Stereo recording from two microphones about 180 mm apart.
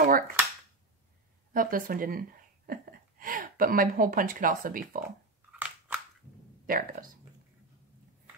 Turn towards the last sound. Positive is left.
turn(degrees=-50)  # may be behind; listen again after turning